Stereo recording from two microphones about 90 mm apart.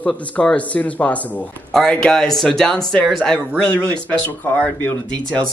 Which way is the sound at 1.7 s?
5° left (ahead or behind).